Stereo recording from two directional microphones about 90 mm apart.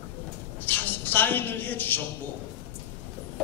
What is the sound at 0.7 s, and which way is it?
A man's voice, 20° left (ahead or behind).